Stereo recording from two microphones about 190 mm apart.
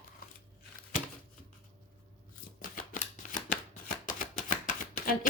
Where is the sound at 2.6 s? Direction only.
45° left (ahead or behind).